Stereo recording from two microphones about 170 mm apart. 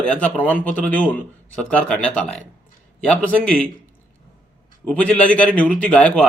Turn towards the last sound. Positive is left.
turn(degrees=10)  # may be behind; listen again after turning